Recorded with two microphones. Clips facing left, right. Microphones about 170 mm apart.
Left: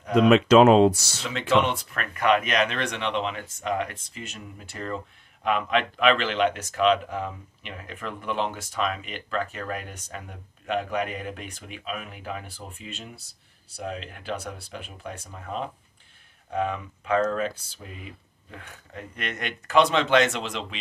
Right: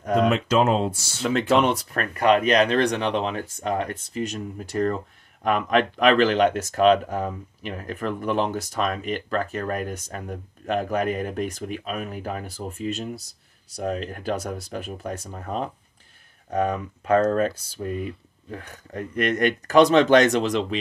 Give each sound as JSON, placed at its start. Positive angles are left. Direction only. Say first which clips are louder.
{"t": 0.3, "sound": "speech", "louder": "left 5 dB", "side_deg": 85}
{"t": 1.2, "sound": "speech", "louder": "right 3 dB", "side_deg": -45}